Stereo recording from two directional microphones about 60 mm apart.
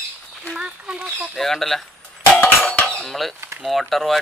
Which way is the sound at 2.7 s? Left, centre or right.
Centre.